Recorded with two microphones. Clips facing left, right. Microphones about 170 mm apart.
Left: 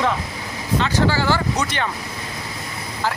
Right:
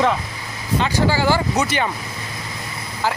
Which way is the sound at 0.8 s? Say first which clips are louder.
Right 1 dB; 15° right (ahead or behind).